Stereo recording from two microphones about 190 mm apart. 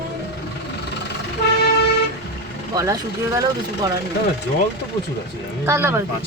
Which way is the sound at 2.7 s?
15° right (ahead or behind).